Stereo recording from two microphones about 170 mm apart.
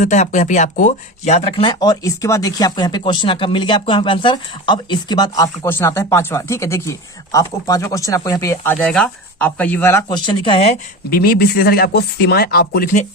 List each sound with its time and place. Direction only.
0.0 s speech: 45° left (ahead or behind)
1.6 s speech: 25° left (ahead or behind)
10.1 s speech: 30° left (ahead or behind)
11.1 s speech: 60° left (ahead or behind)